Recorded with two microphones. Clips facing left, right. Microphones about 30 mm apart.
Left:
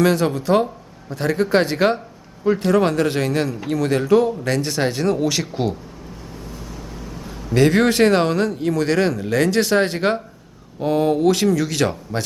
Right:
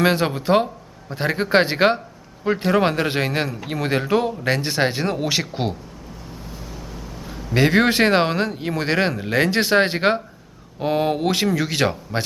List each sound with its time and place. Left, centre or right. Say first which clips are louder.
0.0 s speech: left 1 dB; right
7.5 s speech: left 1 dB; centre